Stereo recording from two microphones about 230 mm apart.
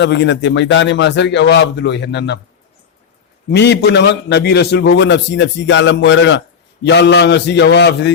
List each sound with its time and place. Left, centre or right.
0.0 s a man's voice: left
3.5 s a man's voice: left